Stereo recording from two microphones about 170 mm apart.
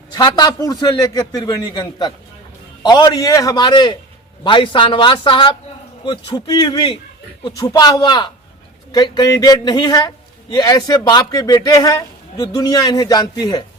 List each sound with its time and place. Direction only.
0.1 s a man's voice: 25° left (ahead or behind)